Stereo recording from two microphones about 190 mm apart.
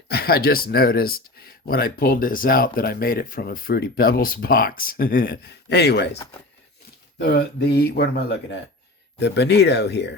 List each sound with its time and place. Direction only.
0.1 s speech: 55° left (ahead or behind)
7.2 s speech: 60° left (ahead or behind)